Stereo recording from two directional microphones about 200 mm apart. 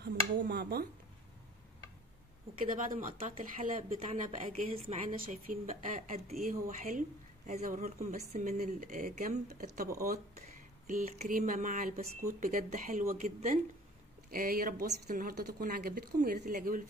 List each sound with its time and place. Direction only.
0.0 s speech: 55° right (ahead or behind)
2.6 s a woman's voice: 45° right (ahead or behind)
10.9 s a woman's voice: 40° right (ahead or behind)